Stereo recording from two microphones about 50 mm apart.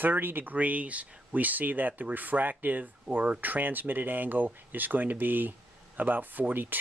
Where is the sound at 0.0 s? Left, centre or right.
Right.